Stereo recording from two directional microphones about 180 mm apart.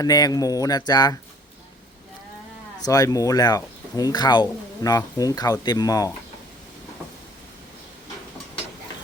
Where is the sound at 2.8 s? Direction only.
20° left (ahead or behind).